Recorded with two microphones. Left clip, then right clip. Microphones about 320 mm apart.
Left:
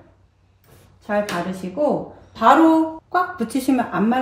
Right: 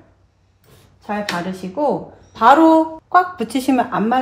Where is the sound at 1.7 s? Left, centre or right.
Right.